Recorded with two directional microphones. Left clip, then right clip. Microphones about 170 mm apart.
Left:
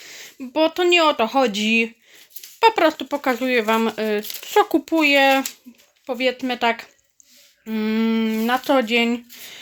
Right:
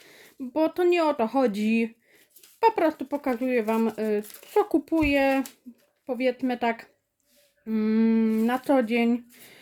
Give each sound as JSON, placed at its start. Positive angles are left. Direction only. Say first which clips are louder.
{"t": 0.1, "sound": "speech", "louder": "left 4 dB", "side_deg": -10}